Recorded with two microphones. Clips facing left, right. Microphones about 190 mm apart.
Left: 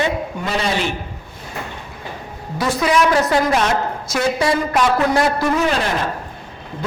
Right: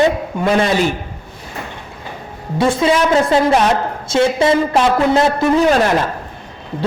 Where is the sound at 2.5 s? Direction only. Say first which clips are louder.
Right 3 dB; 25° right (ahead or behind).